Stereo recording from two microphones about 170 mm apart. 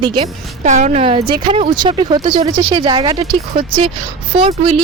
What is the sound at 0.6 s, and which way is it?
A woman's voice, 45° right (ahead or behind).